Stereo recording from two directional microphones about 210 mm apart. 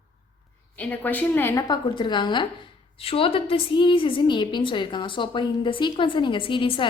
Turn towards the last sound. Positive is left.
turn(degrees=25)  # may be behind; listen again after turning